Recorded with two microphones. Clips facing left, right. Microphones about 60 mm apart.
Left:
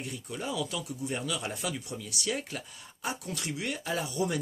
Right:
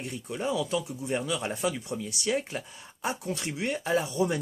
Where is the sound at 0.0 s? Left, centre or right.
Right.